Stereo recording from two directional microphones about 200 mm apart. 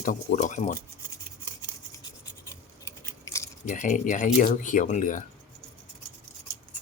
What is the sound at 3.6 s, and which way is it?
Speech, 40° left (ahead or behind).